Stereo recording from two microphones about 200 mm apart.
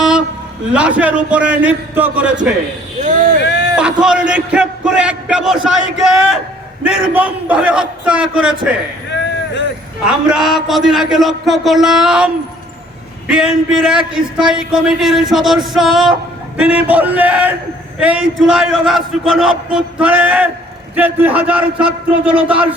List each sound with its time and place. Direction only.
0.0 s a sound: 5° right (ahead or behind)
0.7 s a man's voice: 5° right (ahead or behind)
3.0 s vehicle: 40° right (ahead or behind)
3.4 s a sound: 60° left (ahead or behind)
3.8 s a man's voice: 5° right (ahead or behind)
10.1 s a man's voice: 5° right (ahead or behind)